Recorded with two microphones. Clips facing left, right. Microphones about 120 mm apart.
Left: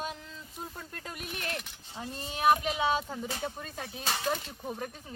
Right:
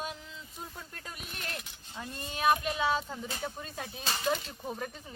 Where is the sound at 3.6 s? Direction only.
Centre (ahead or behind).